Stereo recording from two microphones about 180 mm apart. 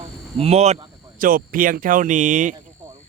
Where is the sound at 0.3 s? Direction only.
35° right (ahead or behind).